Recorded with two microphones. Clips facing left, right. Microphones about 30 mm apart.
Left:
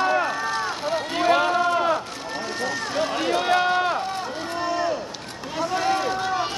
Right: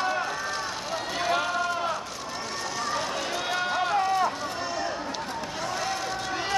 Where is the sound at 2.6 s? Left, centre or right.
Left.